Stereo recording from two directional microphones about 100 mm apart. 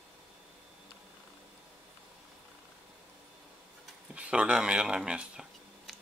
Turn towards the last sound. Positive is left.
turn(degrees=-10)  # may be behind; listen again after turning